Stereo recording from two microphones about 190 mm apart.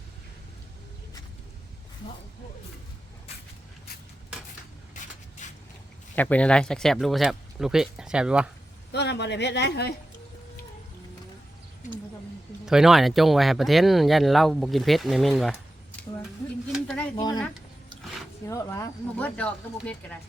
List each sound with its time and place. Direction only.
4.9 s a sound: 40° left (ahead or behind)
5.4 s vehicle: 40° left (ahead or behind)
6.1 s speech: 10° left (ahead or behind)
8.9 s speech: 60° left (ahead or behind)
12.6 s speech: centre (ahead or behind)
16.7 s a sound: centre (ahead or behind)
17.2 s speech: 20° left (ahead or behind)
18.4 s speech: 15° left (ahead or behind)